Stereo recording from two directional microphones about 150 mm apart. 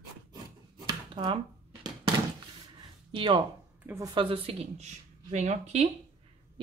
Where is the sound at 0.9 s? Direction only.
35° right (ahead or behind).